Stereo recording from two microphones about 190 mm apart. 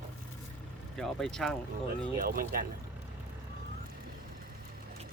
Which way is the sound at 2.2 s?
50° right (ahead or behind).